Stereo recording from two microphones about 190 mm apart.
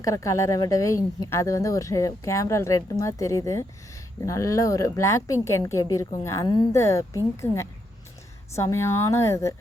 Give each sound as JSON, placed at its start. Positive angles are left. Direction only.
{"t": 0.0, "sound": "speech", "side_deg": 15}
{"t": 8.5, "sound": "speech", "side_deg": 15}